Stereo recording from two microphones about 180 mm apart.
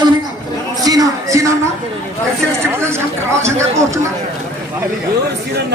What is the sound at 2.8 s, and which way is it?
Speech, 15° right (ahead or behind).